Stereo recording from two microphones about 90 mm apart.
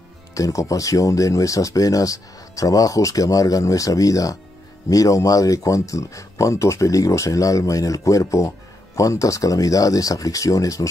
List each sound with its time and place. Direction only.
0.3 s speech: 40° left (ahead or behind)